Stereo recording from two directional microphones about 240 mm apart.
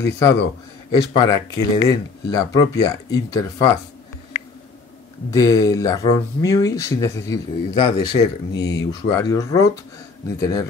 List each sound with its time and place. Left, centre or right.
0.9 s speech: centre
5.3 s speech: centre